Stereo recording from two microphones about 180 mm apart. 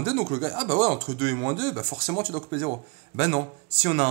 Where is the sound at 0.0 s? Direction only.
30° right (ahead or behind).